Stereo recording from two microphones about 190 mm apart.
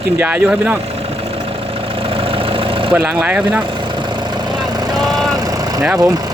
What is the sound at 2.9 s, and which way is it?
Speech, 10° right (ahead or behind).